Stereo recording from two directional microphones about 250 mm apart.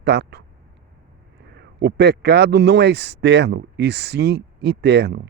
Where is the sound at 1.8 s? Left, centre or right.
Right.